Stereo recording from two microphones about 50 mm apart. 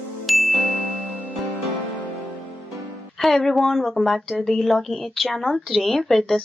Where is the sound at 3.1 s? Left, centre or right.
Centre.